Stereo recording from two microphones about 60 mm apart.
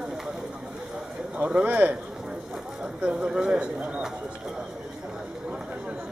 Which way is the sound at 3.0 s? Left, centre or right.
Centre.